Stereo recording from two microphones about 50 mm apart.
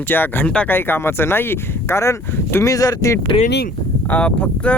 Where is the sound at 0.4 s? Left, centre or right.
Left.